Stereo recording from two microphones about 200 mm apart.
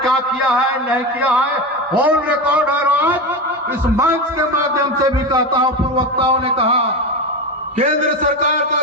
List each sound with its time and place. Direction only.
2.0 s a man's voice: 10° right (ahead or behind)
4.9 s a man's voice: 20° right (ahead or behind)